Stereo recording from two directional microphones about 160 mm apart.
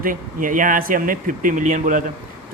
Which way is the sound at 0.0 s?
60° right (ahead or behind).